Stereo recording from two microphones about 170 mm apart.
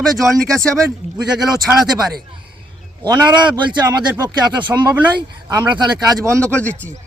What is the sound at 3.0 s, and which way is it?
Speech, 25° right (ahead or behind).